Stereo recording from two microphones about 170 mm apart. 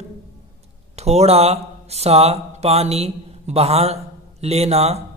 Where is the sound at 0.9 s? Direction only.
40° right (ahead or behind).